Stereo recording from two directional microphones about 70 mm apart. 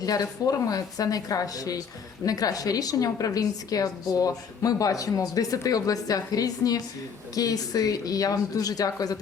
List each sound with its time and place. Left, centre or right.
0.0 s a woman's voice: left